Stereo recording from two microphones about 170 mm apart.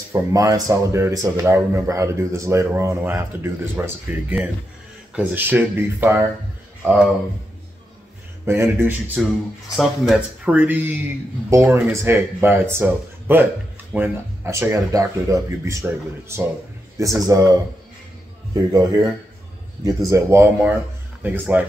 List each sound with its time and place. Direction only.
0.1 s speech: 20° right (ahead or behind)
8.5 s speech: 15° right (ahead or behind)
18.5 s speech: 20° right (ahead or behind)